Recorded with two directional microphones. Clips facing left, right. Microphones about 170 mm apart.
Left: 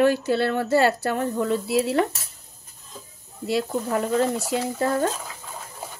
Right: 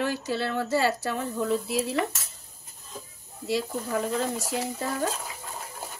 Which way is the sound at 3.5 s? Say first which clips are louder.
Left 4 dB; 65° left (ahead or behind).